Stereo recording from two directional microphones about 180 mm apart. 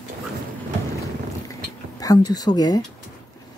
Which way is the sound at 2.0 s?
20° left (ahead or behind).